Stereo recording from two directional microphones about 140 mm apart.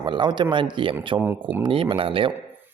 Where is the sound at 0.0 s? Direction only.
35° right (ahead or behind).